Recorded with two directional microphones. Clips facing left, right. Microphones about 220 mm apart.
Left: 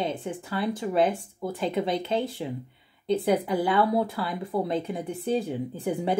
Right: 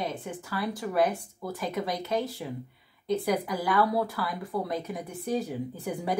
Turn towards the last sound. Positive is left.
turn(degrees=25)  # may be behind; listen again after turning